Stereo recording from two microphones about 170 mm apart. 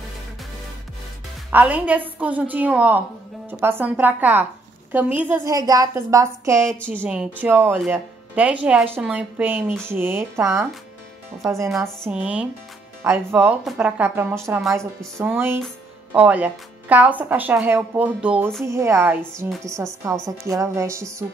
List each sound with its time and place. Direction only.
1.5 s a woman's voice: 10° right (ahead or behind)
5.4 s a woman's voice: 20° right (ahead or behind)
12.1 s a woman's voice: 5° right (ahead or behind)
18.7 s a woman's voice: 15° right (ahead or behind)